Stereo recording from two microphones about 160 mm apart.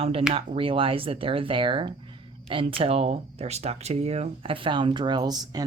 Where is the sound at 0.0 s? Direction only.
35° right (ahead or behind).